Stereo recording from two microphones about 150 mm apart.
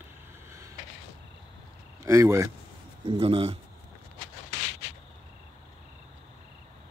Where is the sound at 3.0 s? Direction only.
40° right (ahead or behind).